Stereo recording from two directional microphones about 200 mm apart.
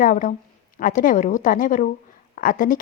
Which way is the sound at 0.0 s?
40° left (ahead or behind).